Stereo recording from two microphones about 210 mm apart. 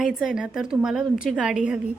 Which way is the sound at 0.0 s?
Centre (ahead or behind).